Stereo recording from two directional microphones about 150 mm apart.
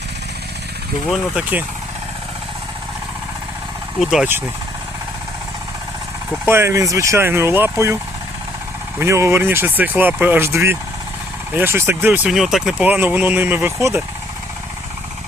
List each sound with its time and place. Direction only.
1.1 s speech: 10° right (ahead or behind)
4.0 s speech: 5° right (ahead or behind)
6.4 s speech: 15° right (ahead or behind)
9.0 s speech: 20° right (ahead or behind)
12.3 s speech: centre (ahead or behind)